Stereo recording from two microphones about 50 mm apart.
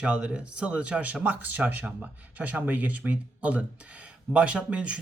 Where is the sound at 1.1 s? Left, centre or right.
Right.